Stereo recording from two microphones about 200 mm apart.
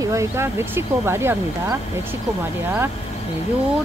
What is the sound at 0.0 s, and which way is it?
Speech, 15° right (ahead or behind).